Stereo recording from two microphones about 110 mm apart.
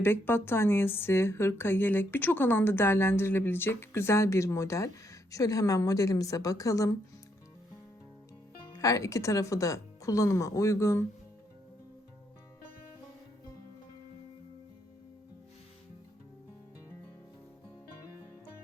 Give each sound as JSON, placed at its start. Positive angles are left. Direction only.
{"t": 0.0, "sound": "a woman's voice", "side_deg": 20}
{"t": 8.7, "sound": "a woman's voice", "side_deg": 30}